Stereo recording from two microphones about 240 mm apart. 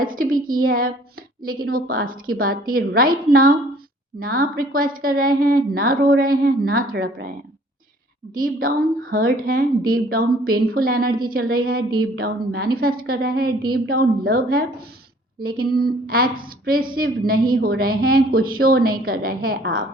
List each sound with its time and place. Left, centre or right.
0.0 s a woman's voice: right
8.4 s a woman's voice: right